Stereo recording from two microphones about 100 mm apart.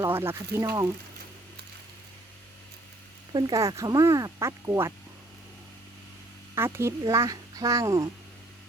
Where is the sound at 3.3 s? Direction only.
35° right (ahead or behind).